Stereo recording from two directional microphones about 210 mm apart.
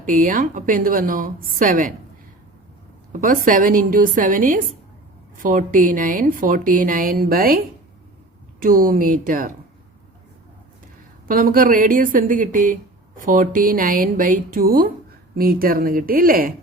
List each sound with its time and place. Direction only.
0.0 s a woman's voice: 40° right (ahead or behind)
3.1 s a woman's voice: 40° right (ahead or behind)
8.6 s a woman's voice: 40° right (ahead or behind)
11.3 s a woman's voice: 40° right (ahead or behind)